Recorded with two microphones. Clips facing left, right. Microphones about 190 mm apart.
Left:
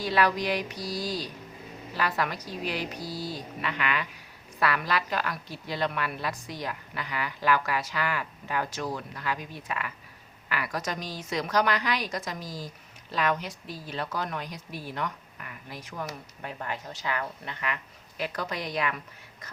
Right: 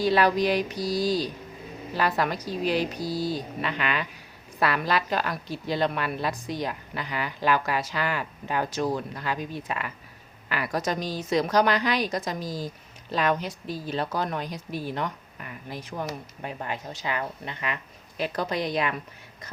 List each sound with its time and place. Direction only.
0.0 s a woman's voice: 30° right (ahead or behind)